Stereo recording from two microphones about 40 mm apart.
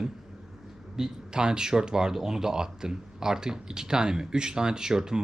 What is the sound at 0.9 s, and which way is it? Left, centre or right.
Speech, centre.